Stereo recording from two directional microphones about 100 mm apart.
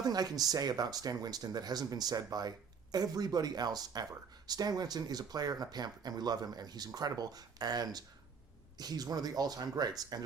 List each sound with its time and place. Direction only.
0.0 s speech: 40° right (ahead or behind)